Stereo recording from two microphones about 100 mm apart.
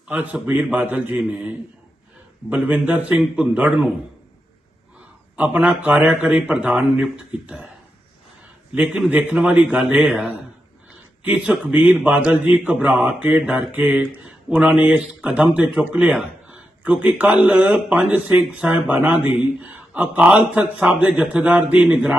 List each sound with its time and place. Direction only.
0.1 s speech: 15° right (ahead or behind)
5.4 s speech: 15° right (ahead or behind)
8.7 s speech: 10° right (ahead or behind)